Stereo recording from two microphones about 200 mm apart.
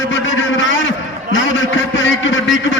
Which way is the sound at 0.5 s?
65° left (ahead or behind).